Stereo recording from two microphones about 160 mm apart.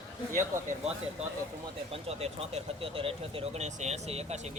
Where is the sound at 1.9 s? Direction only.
40° right (ahead or behind).